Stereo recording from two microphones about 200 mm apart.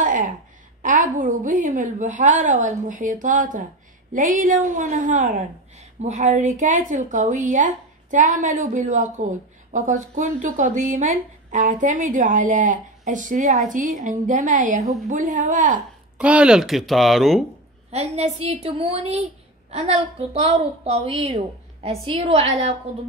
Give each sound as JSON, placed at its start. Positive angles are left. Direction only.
{"t": 0.0, "sound": "a sound", "side_deg": -40}
{"t": 0.8, "sound": "a woman's voice", "side_deg": -40}
{"t": 16.2, "sound": "speech", "side_deg": -5}
{"t": 17.9, "sound": "a woman's voice", "side_deg": -30}